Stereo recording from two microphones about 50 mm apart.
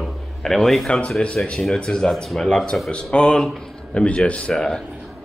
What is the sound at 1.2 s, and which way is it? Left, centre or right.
Speech, centre.